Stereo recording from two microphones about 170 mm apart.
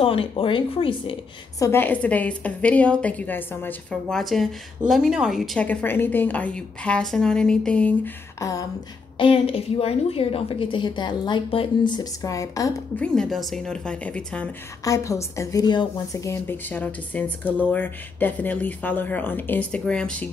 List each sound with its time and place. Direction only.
0.0 s speech: 35° left (ahead or behind)
1.6 s a woman's voice: 15° left (ahead or behind)
9.2 s a woman's voice: 35° left (ahead or behind)
13.0 s a woman's voice: 5° left (ahead or behind)
14.9 s a woman's voice: 15° left (ahead or behind)